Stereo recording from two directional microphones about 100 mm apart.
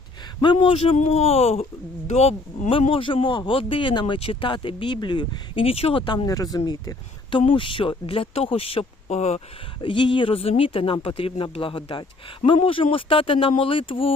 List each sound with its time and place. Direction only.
0.4 s speech: 60° left (ahead or behind); by 1.6 s 90° left
2.1 s speech: 80° left; by 6.2 s 60° left (ahead or behind)
6.2 s speech: 35° left (ahead or behind)
6.7 s speech: 50° left (ahead or behind); by 9.4 s 90° left
9.8 s speech: 55° left (ahead or behind)